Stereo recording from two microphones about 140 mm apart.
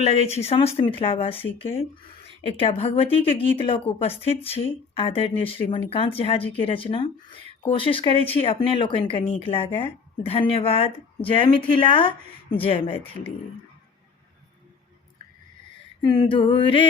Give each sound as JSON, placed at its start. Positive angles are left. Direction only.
{"t": 0.3, "sound": "speech", "side_deg": 50}
{"t": 2.6, "sound": "a woman's voice", "side_deg": 40}
{"t": 16.0, "sound": "a woman's voice", "side_deg": 30}